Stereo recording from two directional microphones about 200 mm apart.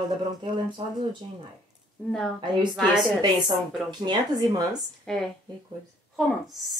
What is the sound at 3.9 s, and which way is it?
Speech, 20° right (ahead or behind).